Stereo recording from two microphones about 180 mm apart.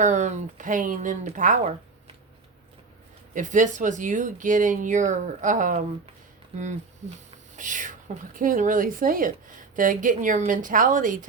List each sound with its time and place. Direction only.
0.0 s speech: 40° right (ahead or behind)
3.3 s speech: 45° right (ahead or behind)
7.5 s speech: 45° right (ahead or behind)